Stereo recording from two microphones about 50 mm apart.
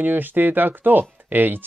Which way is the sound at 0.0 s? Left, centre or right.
Right.